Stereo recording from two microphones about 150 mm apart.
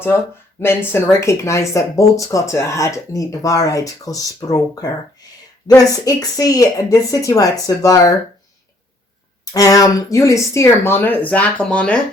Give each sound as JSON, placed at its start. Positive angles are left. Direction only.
{"t": 0.9, "sound": "speech", "side_deg": 20}
{"t": 9.4, "sound": "speech", "side_deg": 25}